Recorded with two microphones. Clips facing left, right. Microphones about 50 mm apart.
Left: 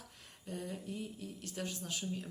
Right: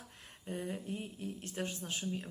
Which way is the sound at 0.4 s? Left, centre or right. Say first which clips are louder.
Right 3 dB; right.